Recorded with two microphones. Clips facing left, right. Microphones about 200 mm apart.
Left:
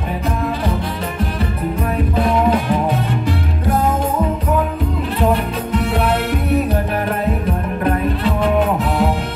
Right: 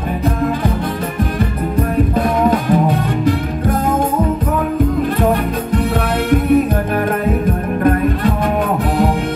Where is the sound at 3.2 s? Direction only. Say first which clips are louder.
Right 4 dB; 50° right (ahead or behind).